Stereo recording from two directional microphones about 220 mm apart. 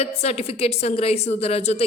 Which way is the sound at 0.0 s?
30° left (ahead or behind).